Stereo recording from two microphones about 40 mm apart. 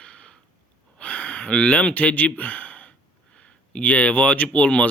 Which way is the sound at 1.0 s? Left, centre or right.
Left.